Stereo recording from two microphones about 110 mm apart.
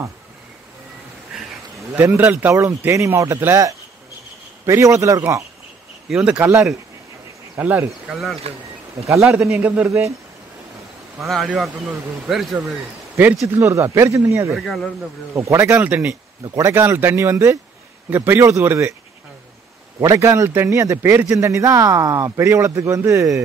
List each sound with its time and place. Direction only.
1.9 s a man's voice: 20° right (ahead or behind)
2.5 s a man's voice: 30° right (ahead or behind)
6.0 s speech: 5° right (ahead or behind)
7.5 s a man's voice: 20° right (ahead or behind)
8.1 s speech: centre (ahead or behind)
9.0 s a man's voice: 30° right (ahead or behind)
11.1 s speech: centre (ahead or behind)
13.1 s speech: 15° right (ahead or behind)
13.6 s a man's voice: 25° right (ahead or behind)
14.5 s speech: centre (ahead or behind)
15.0 s a man's voice: 25° right (ahead or behind)
16.4 s speech: 30° right (ahead or behind)
16.7 s a man's voice: 20° right (ahead or behind)
20.0 s a man's voice: 25° right (ahead or behind)